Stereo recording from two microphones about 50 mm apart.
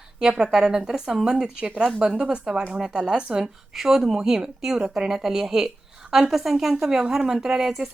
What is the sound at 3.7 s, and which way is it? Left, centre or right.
A woman's voice, centre.